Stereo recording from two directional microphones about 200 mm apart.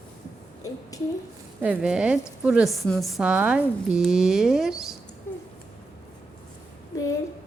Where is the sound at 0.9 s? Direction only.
15° left (ahead or behind).